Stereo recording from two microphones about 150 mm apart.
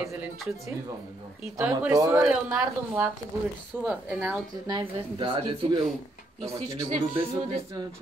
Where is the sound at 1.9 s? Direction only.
20° right (ahead or behind).